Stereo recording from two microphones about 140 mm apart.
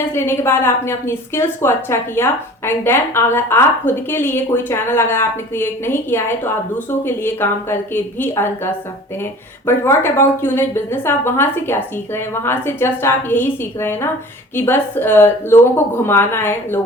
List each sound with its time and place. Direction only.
0.1 s a woman's voice: 15° left (ahead or behind)